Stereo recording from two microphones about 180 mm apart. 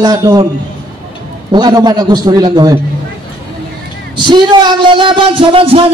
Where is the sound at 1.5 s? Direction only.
20° right (ahead or behind).